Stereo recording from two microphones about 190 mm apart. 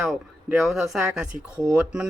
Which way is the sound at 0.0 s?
Centre (ahead or behind).